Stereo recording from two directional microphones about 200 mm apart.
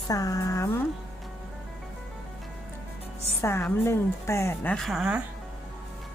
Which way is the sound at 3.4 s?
15° left (ahead or behind).